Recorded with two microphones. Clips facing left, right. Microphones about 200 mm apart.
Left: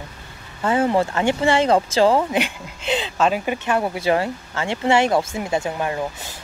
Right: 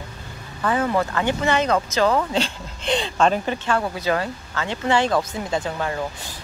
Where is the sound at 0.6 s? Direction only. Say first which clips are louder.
Left 3 dB; 25° left (ahead or behind).